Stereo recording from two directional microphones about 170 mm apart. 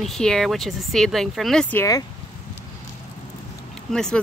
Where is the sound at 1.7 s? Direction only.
15° left (ahead or behind).